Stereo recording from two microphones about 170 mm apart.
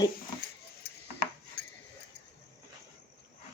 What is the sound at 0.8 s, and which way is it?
Keys jangling, 70° left (ahead or behind).